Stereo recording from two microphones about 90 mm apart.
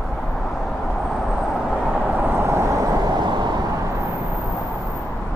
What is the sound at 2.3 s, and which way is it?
Vehicle, 30° right (ahead or behind).